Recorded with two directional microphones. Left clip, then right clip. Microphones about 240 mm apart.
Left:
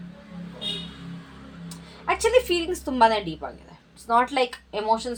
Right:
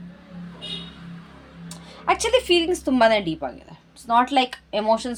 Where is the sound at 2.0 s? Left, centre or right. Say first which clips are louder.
Right 1 dB; right.